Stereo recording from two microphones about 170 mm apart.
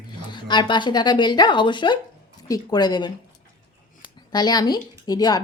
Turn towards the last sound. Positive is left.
turn(degrees=20)  # may be behind; listen again after turning